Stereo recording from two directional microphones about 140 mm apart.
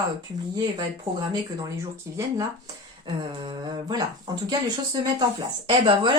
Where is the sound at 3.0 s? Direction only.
35° right (ahead or behind).